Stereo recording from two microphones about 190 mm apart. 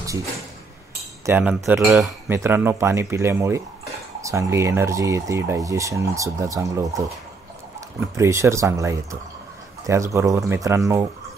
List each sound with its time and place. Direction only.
1.2 s speech: 10° right (ahead or behind)
8.0 s speech: 15° right (ahead or behind)